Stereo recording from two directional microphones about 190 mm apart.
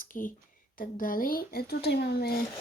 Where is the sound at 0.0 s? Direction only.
45° left (ahead or behind).